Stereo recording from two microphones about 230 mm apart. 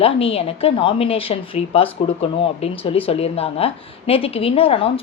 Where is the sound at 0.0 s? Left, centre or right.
Left.